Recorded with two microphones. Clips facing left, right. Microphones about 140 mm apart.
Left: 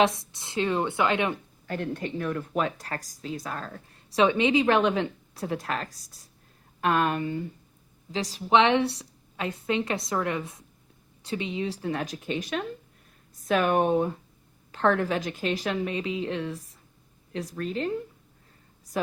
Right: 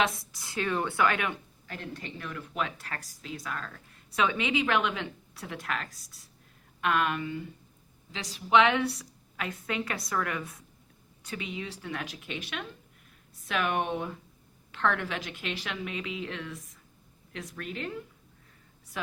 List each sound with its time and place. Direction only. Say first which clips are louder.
0.0 s a woman's voice: left 6 dB; 25° left (ahead or behind)
1.6 s a woman's voice: left 10 dB; 45° left (ahead or behind)